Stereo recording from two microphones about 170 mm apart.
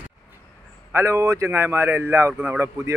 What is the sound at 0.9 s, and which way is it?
A man's voice, 15° right (ahead or behind).